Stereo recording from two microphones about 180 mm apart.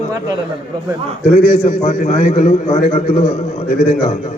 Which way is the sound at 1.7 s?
35° left (ahead or behind).